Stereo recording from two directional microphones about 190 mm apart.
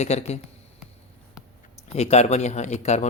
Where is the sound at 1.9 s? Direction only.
35° left (ahead or behind).